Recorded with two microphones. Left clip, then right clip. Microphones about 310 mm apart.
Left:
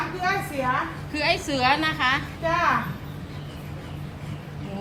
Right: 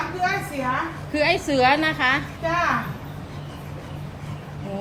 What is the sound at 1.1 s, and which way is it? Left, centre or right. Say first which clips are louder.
A woman's voice: right 4 dB; centre.